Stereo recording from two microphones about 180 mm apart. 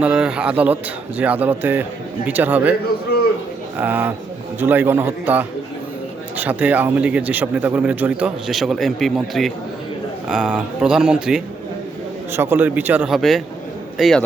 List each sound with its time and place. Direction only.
0.0 s speech: 5° right (ahead or behind)
3.1 s a sound: 60° left (ahead or behind)
3.8 s speech: 10° right (ahead or behind)